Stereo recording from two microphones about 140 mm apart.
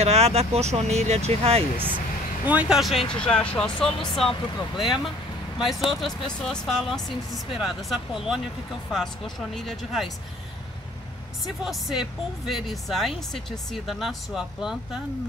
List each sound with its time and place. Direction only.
0.0 s speech: 50° right (ahead or behind)
2.4 s speech: 10° right (ahead or behind)
11.4 s speech: centre (ahead or behind)